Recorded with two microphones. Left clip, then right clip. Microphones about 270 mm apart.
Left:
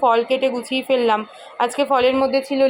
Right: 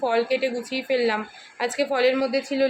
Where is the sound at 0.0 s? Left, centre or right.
Centre.